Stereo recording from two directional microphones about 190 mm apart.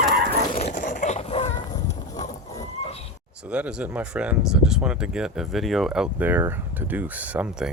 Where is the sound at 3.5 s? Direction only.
5° right (ahead or behind).